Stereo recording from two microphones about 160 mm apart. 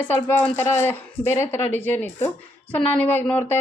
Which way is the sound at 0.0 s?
15° left (ahead or behind).